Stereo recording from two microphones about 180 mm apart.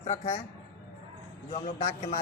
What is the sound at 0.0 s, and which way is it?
Speech, 40° left (ahead or behind).